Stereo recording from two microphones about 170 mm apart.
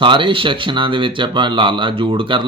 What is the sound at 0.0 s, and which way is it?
Speech, 30° right (ahead or behind).